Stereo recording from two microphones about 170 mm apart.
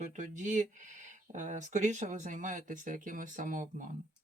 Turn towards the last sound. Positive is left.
turn(degrees=-50)  # may be behind; listen again after turning